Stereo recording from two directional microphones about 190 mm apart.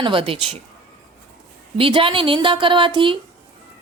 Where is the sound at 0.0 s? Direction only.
25° right (ahead or behind).